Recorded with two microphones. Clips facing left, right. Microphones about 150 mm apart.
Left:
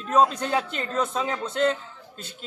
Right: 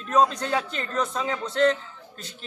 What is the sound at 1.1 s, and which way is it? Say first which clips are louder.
Speech: even; 5° left (ahead or behind).